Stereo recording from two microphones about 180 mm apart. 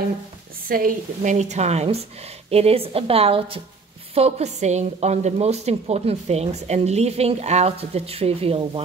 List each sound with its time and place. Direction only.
0.7 s a woman's voice: 50° right (ahead or behind); by 8.8 s 30° right (ahead or behind)